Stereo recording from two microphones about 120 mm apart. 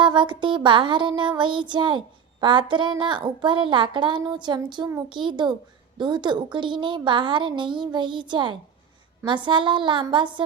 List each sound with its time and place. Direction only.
0.0 s child singing: 40° right (ahead or behind)